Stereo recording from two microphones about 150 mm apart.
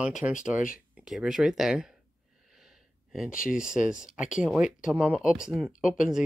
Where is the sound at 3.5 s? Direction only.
5° right (ahead or behind).